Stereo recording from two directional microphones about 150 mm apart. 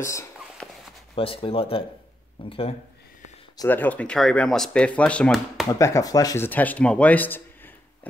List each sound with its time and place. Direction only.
0.0 s speech: 20° left (ahead or behind)
0.6 s a sound: 5° left (ahead or behind)
1.1 s speech: 35° left (ahead or behind)
3.6 s speech: 10° left (ahead or behind)
5.7 s speech: 20° left (ahead or behind)